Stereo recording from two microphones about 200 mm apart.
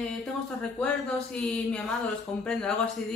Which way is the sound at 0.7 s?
5° left (ahead or behind).